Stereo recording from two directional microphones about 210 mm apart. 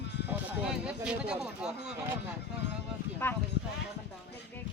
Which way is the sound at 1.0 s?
5° right (ahead or behind).